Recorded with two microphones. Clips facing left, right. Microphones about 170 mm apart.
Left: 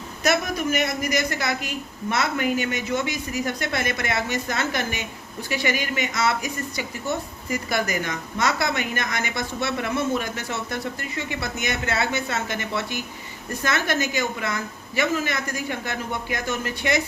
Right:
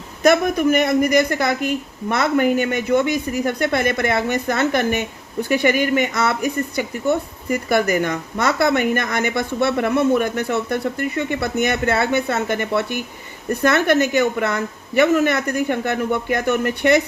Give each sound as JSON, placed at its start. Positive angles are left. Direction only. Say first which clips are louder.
{"t": 0.2, "sound": "a woman's voice", "louder": "right 8 dB", "side_deg": -55}